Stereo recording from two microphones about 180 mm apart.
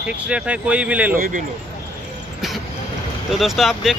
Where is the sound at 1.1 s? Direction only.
50° right (ahead or behind).